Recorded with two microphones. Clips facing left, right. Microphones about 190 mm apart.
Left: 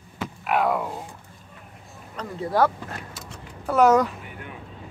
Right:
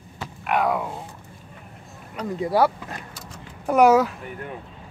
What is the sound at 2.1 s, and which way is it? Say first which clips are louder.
Speech: right 2 dB; 10° right (ahead or behind).